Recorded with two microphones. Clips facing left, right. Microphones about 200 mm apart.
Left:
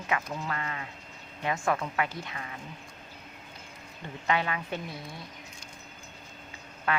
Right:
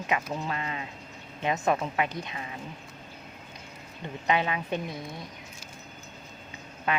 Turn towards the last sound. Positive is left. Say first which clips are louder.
# right 1 dB
turn(degrees=-20)  # may be behind; listen again after turning